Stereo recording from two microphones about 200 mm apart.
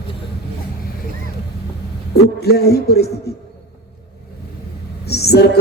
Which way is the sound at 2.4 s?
55° left (ahead or behind).